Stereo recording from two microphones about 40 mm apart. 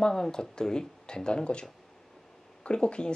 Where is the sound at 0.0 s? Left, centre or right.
Centre.